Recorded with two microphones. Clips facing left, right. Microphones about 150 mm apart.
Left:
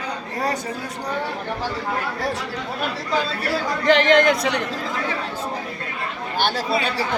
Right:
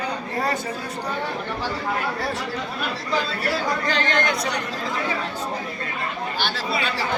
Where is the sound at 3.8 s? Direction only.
85° left.